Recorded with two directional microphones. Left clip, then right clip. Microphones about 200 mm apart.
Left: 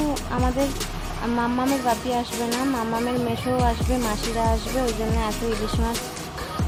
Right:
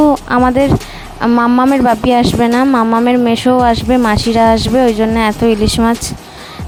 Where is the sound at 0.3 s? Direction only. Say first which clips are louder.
Right 14 dB; 55° right (ahead or behind).